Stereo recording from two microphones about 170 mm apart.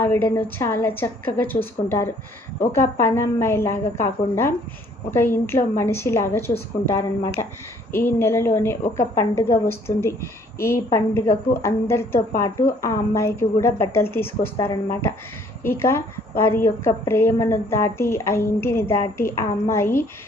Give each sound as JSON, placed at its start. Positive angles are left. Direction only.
{"t": 0.0, "sound": "a woman's voice", "side_deg": 15}
{"t": 7.9, "sound": "a woman's voice", "side_deg": 15}